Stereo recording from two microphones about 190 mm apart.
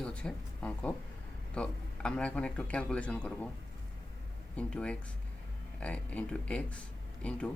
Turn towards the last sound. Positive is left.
turn(degrees=5)  # may be behind; listen again after turning